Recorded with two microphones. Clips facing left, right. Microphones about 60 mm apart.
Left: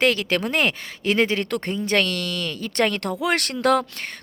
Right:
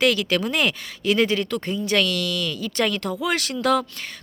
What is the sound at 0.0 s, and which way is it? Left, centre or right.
Speech, left.